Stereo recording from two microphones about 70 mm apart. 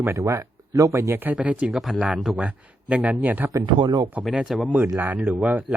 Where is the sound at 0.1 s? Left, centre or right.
Right.